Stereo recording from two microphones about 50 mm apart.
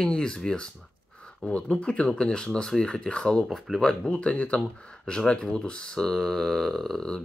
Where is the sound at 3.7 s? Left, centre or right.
Centre.